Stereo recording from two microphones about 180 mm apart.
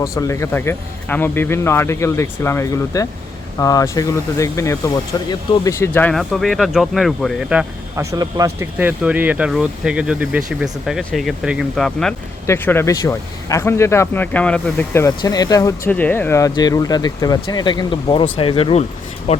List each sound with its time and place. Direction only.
0.0 s speech: 15° left (ahead or behind); by 7.7 s 5° right (ahead or behind)
7.9 s speech: 20° right (ahead or behind); by 19.4 s 35° left (ahead or behind)